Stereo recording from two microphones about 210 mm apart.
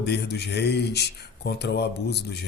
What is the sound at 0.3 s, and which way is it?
Mantra, 50° left (ahead or behind).